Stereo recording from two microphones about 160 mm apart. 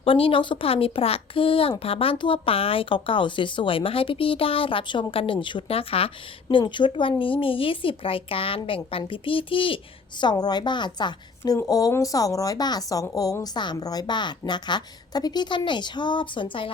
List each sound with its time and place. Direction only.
0.0 s a woman's voice: 35° left (ahead or behind)